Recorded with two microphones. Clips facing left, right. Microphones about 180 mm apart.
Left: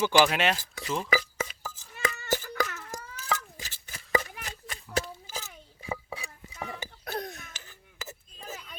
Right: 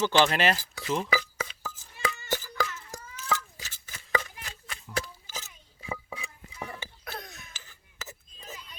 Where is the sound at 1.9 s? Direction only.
55° left (ahead or behind).